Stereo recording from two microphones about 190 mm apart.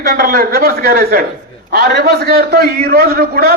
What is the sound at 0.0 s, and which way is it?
A man's voice, 55° right (ahead or behind).